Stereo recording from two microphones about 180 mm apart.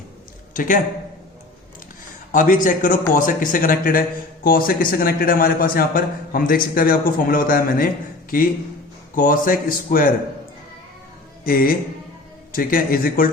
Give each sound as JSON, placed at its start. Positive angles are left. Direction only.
{"t": 0.5, "sound": "a man's voice", "side_deg": 45}
{"t": 2.3, "sound": "a man's voice", "side_deg": 45}
{"t": 11.4, "sound": "a man's voice", "side_deg": 50}